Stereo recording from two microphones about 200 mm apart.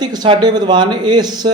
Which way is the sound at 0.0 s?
20° right (ahead or behind).